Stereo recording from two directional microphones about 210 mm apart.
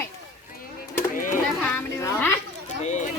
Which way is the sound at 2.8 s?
35° left (ahead or behind).